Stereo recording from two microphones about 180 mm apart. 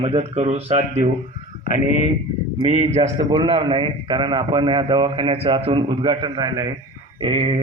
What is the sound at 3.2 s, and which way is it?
A man's voice, 25° right (ahead or behind).